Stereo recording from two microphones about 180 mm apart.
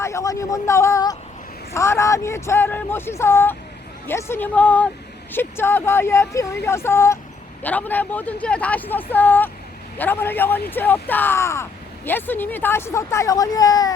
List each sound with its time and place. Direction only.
0.0 s speech: 15° left (ahead or behind)